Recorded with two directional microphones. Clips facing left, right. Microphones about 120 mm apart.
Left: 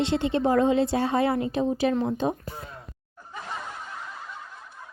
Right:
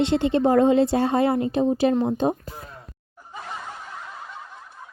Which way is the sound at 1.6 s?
25° right (ahead or behind).